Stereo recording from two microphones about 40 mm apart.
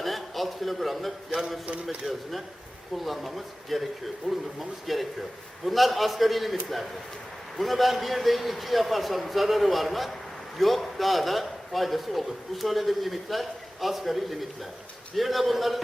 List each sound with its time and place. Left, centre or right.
0.0 s a man's voice: centre
2.0 s speech: right
2.9 s a man's voice: centre
4.2 s speech: centre
4.9 s a man's voice: centre